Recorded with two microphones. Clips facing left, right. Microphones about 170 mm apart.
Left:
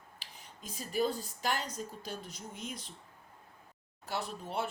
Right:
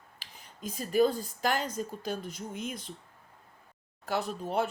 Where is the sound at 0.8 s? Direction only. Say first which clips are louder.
Right 7 dB; 50° right (ahead or behind).